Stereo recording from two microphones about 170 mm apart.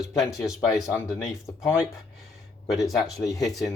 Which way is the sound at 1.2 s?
20° left (ahead or behind).